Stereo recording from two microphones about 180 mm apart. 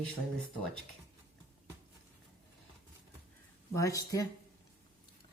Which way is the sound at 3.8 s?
20° left (ahead or behind).